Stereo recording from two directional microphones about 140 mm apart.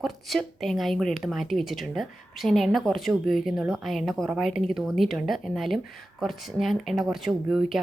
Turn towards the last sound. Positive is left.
turn(degrees=0)  # may be behind; listen again after turning